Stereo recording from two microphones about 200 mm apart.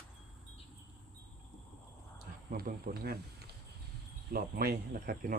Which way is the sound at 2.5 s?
45° right (ahead or behind).